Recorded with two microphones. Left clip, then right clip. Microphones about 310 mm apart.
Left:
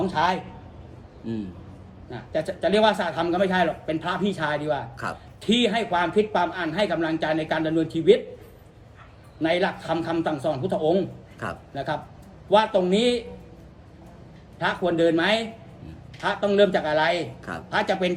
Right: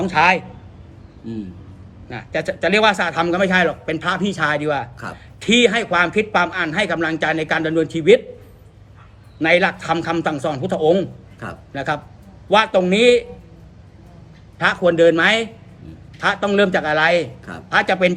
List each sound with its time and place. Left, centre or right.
0.0 s a man's voice: right
2.0 s a man's voice: right
9.4 s a man's voice: right
14.6 s a man's voice: right